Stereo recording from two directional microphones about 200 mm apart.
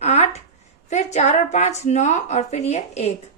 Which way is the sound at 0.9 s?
35° left (ahead or behind).